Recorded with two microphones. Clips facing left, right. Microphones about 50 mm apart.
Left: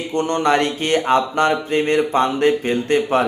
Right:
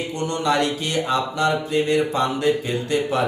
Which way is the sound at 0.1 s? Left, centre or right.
Left.